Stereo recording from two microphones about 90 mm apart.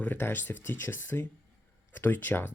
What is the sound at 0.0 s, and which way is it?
Speech, 25° left (ahead or behind).